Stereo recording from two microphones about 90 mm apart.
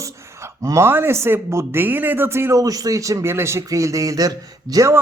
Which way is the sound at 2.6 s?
45° right (ahead or behind).